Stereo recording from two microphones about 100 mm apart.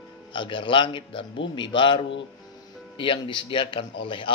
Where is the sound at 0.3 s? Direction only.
55° left (ahead or behind).